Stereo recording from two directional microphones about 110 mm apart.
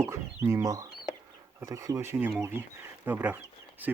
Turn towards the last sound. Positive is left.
turn(degrees=-15)  # may be behind; listen again after turning